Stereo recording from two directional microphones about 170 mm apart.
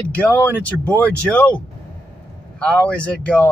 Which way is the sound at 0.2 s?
10° left (ahead or behind).